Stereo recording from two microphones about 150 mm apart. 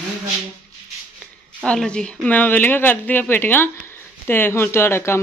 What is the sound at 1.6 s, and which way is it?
A woman's voice, 5° left (ahead or behind).